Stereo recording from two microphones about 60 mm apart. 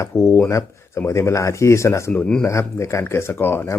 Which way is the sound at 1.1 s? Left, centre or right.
Left.